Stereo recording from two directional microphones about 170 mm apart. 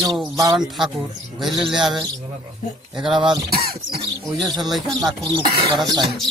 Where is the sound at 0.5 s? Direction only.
Centre (ahead or behind).